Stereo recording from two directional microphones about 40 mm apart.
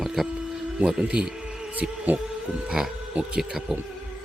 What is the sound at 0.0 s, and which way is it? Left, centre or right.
Music, centre.